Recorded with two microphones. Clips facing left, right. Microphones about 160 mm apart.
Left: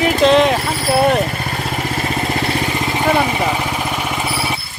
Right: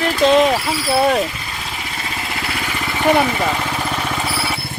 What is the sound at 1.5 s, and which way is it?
Vehicle, 50° left (ahead or behind).